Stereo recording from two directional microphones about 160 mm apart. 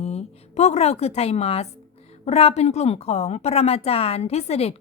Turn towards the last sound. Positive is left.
turn(degrees=40)  # may be behind; listen again after turning